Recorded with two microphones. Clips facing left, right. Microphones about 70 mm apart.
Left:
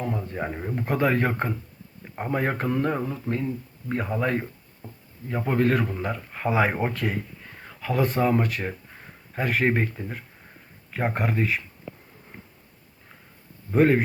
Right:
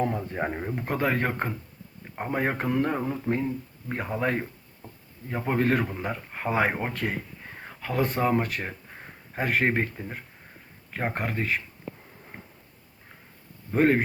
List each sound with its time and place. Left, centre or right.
0.3 s speech: right
0.7 s speech: centre
13.7 s speech: centre